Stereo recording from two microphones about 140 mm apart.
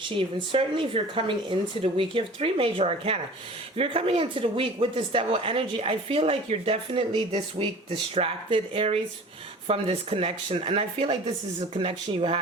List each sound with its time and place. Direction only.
0.0 s speech: 40° right (ahead or behind)